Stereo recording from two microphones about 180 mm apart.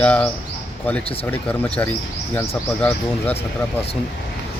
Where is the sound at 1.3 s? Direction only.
10° left (ahead or behind).